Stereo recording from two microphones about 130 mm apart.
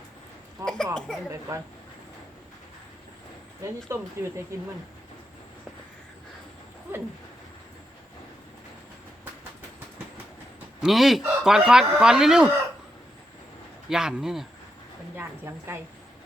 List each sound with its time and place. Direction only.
0.6 s speech: 5° left (ahead or behind)
1.3 s speech: 25° right (ahead or behind)
3.6 s speech: 20° right (ahead or behind)
10.8 s speech: 5° right (ahead or behind)
13.9 s speech: 5° right (ahead or behind)
15.1 s speech: 20° right (ahead or behind)